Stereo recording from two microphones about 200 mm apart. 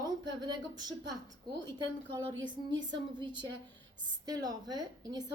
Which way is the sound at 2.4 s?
20° right (ahead or behind).